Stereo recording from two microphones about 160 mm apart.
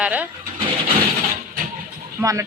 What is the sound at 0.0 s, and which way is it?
Speech, 10° right (ahead or behind).